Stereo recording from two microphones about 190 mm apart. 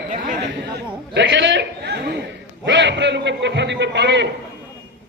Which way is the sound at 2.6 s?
70° right (ahead or behind).